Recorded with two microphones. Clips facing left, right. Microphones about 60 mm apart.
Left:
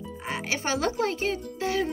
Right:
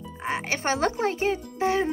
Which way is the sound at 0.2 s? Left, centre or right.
Right.